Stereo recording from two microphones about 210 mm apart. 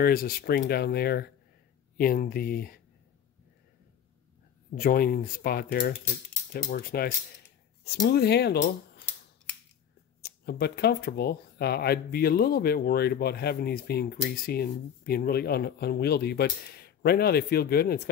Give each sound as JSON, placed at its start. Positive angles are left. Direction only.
{"t": 0.0, "sound": "speech", "side_deg": 45}
{"t": 4.7, "sound": "speech", "side_deg": 45}
{"t": 10.2, "sound": "speech", "side_deg": 50}